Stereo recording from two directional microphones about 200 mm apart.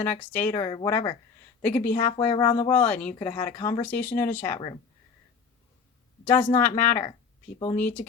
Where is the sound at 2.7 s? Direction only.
10° left (ahead or behind).